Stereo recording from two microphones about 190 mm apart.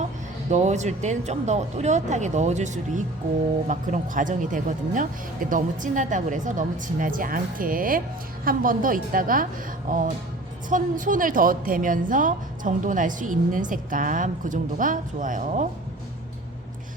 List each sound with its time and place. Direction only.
0.5 s a woman's voice: 35° right (ahead or behind)